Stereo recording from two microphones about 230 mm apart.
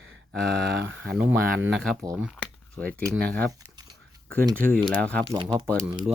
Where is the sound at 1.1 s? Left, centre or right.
Centre.